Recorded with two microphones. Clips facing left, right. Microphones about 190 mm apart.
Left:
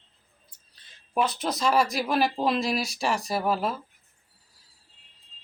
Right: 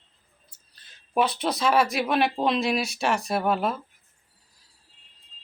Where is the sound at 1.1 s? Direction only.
Centre (ahead or behind).